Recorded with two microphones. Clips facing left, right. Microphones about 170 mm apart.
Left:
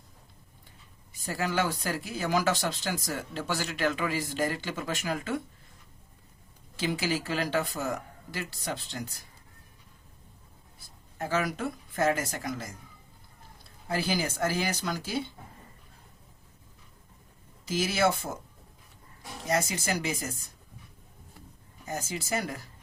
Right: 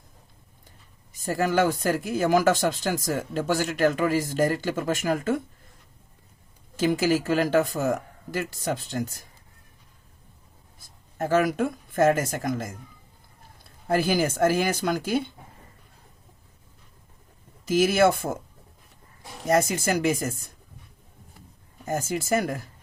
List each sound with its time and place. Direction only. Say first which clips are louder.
1.1 s speech: right 6 dB; 45° right (ahead or behind)
6.7 s speech: right 8 dB; 45° right (ahead or behind)
10.8 s speech: right 6 dB; 50° right (ahead or behind)
13.8 s speech: right 7 dB; 50° right (ahead or behind)
17.7 s speech: right 7 dB; 50° right (ahead or behind)
19.5 s speech: right 7 dB; 50° right (ahead or behind)
21.8 s speech: right 8 dB; 50° right (ahead or behind)